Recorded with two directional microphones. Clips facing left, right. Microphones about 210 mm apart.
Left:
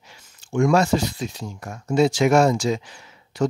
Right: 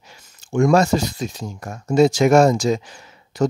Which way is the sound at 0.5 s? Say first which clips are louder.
Right 3 dB; 40° right (ahead or behind).